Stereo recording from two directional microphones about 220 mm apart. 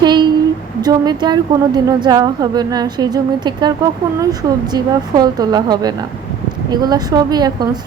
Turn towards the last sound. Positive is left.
turn(degrees=-20)  # may be behind; listen again after turning